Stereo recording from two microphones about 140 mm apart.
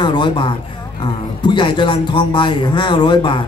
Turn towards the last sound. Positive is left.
turn(degrees=35)  # may be behind; listen again after turning